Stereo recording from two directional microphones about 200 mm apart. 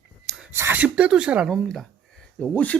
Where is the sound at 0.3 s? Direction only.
5° right (ahead or behind).